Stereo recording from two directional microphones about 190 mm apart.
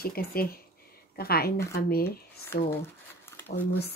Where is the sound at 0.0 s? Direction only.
50° left (ahead or behind).